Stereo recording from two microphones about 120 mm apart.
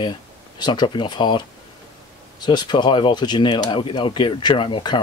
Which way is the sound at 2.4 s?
40° left (ahead or behind).